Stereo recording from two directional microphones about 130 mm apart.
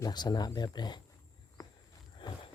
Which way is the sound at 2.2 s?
40° left (ahead or behind).